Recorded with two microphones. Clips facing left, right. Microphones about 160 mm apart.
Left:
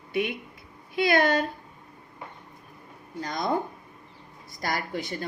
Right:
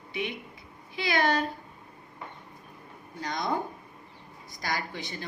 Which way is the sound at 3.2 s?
50° left (ahead or behind).